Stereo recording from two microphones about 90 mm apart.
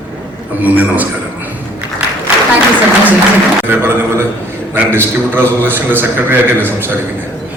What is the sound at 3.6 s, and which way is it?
A man's voice, 25° right (ahead or behind).